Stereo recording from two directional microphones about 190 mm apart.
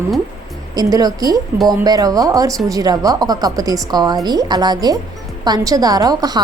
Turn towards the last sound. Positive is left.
turn(degrees=-20)  # may be behind; listen again after turning